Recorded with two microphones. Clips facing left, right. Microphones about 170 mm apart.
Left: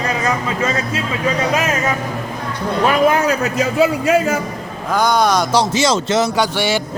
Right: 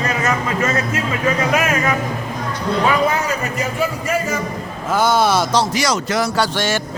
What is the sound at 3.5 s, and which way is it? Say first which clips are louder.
Speech: left 6 dB; 90° left.